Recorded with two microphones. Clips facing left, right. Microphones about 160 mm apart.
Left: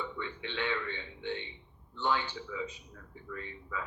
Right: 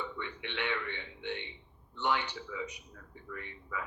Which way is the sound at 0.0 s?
20° right (ahead or behind).